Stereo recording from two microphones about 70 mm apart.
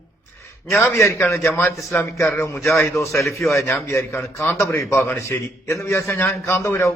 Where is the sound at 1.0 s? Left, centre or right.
Left.